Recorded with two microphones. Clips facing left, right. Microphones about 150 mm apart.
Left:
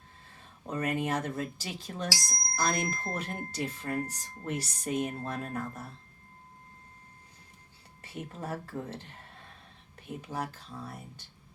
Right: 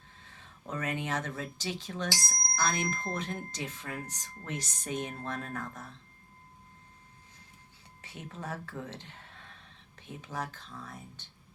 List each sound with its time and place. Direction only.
0.6 s speech: 10° left (ahead or behind)
2.6 s speech: 35° left (ahead or behind)
3.3 s speech: 5° left (ahead or behind)
8.1 s speech: 10° left (ahead or behind)
10.1 s speech: 10° left (ahead or behind)